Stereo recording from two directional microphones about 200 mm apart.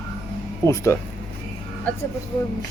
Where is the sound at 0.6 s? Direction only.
15° left (ahead or behind).